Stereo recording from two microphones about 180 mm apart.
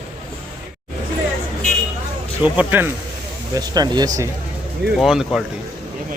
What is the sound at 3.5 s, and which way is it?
Speech, 20° right (ahead or behind).